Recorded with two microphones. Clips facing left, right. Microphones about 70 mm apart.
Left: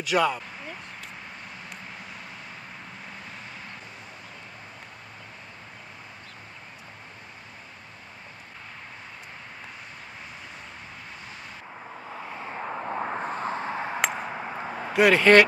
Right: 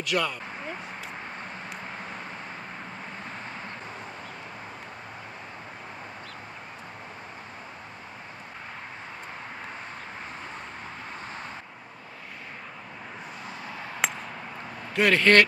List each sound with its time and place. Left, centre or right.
0.0 s speech: centre
12.5 s a sound: left
14.9 s speech: centre